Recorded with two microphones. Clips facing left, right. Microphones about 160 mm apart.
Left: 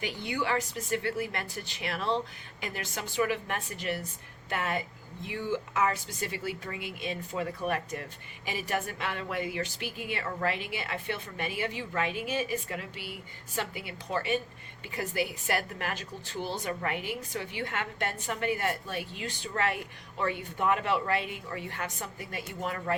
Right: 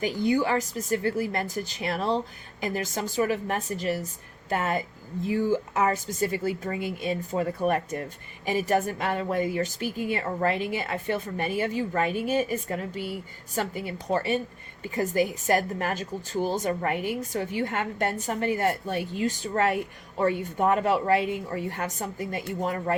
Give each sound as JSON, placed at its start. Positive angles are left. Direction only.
{"t": 0.0, "sound": "a woman's voice", "side_deg": -40}